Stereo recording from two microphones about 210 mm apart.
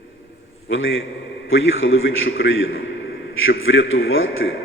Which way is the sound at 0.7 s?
65° left (ahead or behind).